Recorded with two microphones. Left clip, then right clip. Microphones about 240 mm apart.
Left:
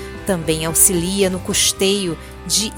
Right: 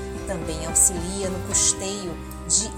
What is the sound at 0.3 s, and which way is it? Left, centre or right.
Speech, left.